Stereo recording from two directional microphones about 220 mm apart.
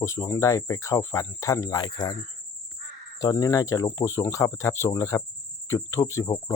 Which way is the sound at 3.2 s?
15° left (ahead or behind).